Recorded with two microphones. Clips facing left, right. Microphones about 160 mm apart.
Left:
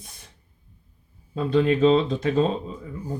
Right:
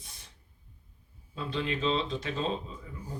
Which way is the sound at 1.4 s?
45° left (ahead or behind).